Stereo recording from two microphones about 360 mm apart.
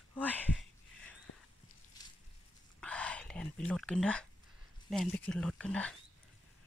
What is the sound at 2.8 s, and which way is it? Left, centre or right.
Speech, centre.